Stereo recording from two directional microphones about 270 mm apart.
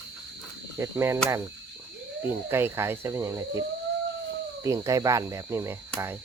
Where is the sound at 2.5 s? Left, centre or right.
Centre.